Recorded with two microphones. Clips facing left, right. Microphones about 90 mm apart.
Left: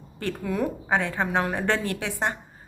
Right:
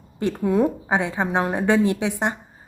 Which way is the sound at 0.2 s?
20° right (ahead or behind).